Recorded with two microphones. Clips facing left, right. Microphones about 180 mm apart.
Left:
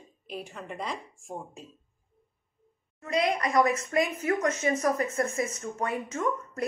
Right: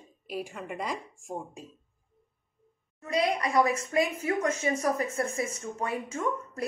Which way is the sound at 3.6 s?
30° right (ahead or behind).